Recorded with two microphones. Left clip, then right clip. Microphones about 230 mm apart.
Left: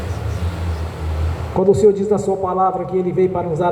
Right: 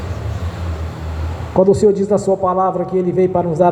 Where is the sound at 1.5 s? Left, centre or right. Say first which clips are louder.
Right 1 dB; right.